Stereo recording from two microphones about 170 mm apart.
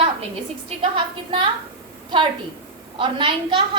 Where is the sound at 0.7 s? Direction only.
30° right (ahead or behind).